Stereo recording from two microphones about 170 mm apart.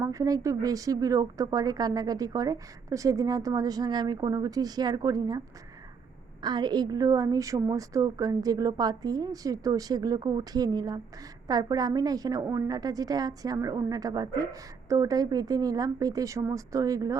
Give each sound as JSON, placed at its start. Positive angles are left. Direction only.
{"t": 0.0, "sound": "a woman's voice", "side_deg": -20}
{"t": 6.4, "sound": "a woman's voice", "side_deg": -25}